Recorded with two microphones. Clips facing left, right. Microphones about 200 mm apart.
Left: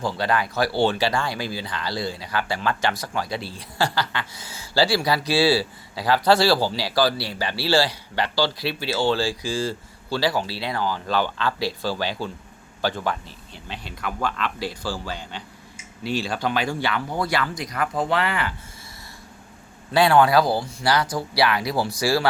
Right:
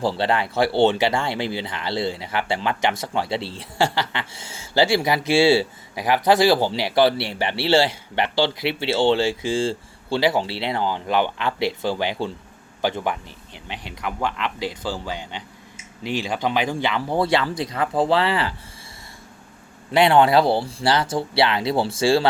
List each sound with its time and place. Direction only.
0.0 s speech: 30° right (ahead or behind)
19.9 s speech: 20° right (ahead or behind)